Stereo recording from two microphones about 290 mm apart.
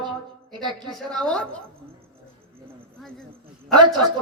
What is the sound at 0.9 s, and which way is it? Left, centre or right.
Speech, centre.